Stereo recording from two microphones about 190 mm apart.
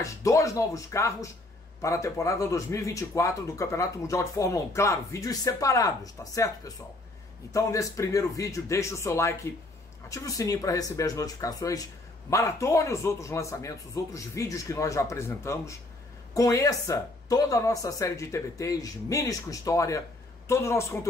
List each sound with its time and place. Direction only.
0.0 s speech: 15° left (ahead or behind)
7.5 s speech: 15° left (ahead or behind)